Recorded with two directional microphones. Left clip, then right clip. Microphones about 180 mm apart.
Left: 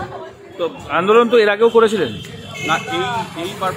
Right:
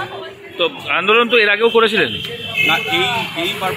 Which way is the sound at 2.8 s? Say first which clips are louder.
Right 4 dB; 30° right (ahead or behind).